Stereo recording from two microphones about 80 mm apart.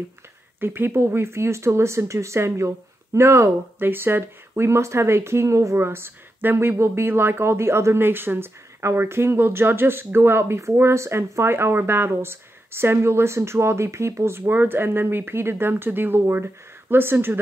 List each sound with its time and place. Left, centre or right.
0.6 s speech: right